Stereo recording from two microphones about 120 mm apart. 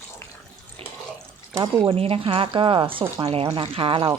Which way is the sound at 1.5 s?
25° right (ahead or behind).